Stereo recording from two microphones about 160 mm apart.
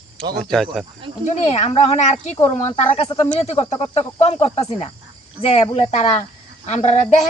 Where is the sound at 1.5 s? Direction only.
40° left (ahead or behind).